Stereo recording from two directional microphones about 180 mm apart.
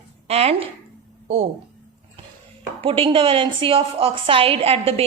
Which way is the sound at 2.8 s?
30° right (ahead or behind).